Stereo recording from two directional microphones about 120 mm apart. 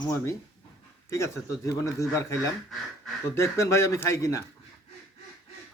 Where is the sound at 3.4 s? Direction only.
25° left (ahead or behind).